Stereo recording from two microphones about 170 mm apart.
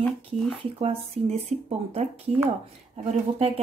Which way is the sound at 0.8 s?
35° right (ahead or behind).